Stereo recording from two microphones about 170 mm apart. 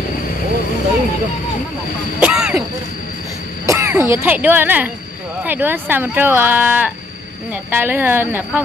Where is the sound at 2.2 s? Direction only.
5° right (ahead or behind).